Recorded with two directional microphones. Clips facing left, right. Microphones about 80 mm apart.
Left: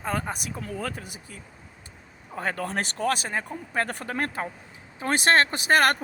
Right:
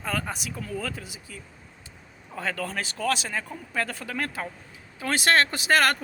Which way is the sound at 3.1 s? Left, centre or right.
Left.